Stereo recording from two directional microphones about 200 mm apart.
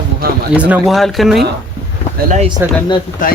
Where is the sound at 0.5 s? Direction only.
5° right (ahead or behind).